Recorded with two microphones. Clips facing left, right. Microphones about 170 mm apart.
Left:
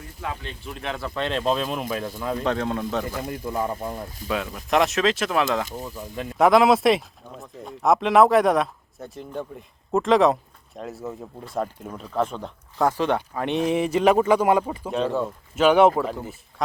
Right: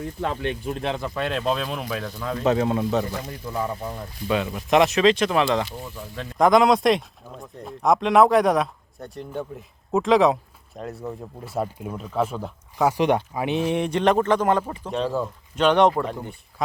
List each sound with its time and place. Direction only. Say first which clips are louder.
0.0 s speech: right 7 dB; 65° right (ahead or behind)
0.6 s speech: right 5 dB; 35° right (ahead or behind)
0.9 s speech: even; 10° right (ahead or behind)
2.0 s speech: left 1 dB; 10° left (ahead or behind)
2.4 s a man's voice: right 6 dB; 5° right (ahead or behind)
3.4 s speech: left 1 dB; 10° left (ahead or behind)
4.3 s speech: right 3 dB; centre (ahead or behind)
5.8 s a man's voice: left 2 dB; 15° left (ahead or behind); by 13.5 s 15° right (ahead or behind)
13.5 s speech: left 1 dB; centre (ahead or behind)